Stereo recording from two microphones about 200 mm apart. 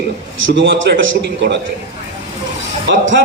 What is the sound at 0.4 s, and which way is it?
A man's voice, 70° right (ahead or behind).